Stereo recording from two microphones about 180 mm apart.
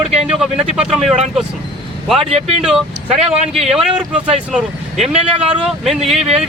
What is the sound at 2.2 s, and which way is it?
Speech, 35° right (ahead or behind).